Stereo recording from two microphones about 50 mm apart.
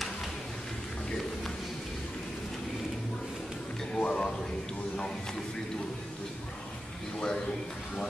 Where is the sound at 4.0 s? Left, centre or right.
Centre.